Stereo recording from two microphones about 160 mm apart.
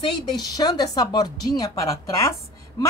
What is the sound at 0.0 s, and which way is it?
A woman's voice, 30° left (ahead or behind).